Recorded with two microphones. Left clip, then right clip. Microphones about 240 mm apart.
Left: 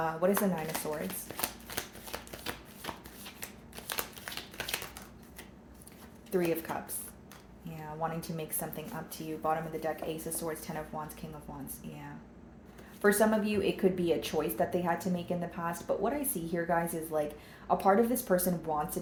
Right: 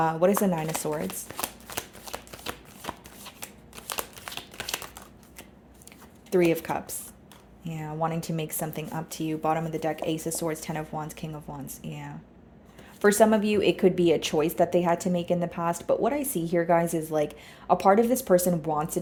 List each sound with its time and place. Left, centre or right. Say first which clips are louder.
0.0 s speech: right 7 dB; right
1.4 s shuffling cards: right 3 dB; right
3.8 s crumpling: right 4 dB; right
6.3 s speech: right 8 dB; right